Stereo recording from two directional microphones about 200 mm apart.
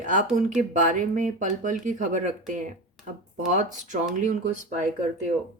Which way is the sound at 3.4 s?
40° right (ahead or behind).